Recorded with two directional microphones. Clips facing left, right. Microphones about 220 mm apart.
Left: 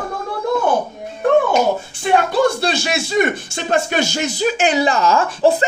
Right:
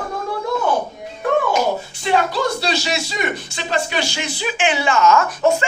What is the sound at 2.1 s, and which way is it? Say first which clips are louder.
Speech: left 4 dB; 55° left (ahead or behind).